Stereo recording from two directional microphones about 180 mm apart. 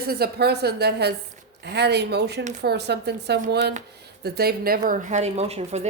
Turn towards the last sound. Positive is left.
turn(degrees=-35)  # may be behind; listen again after turning